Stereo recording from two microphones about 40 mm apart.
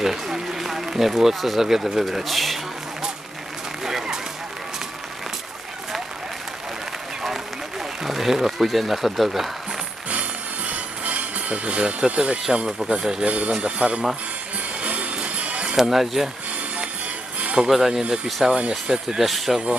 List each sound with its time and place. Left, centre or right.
0.0 s run: centre
0.9 s speech: centre
3.8 s a sound: centre
8.0 s speech: centre
10.1 s music: right
13.0 s speech: centre
13.2 s speech: right
14.8 s music: right
15.8 s speech: centre
17.4 s music: right
17.7 s speech: centre
19.2 s speech: centre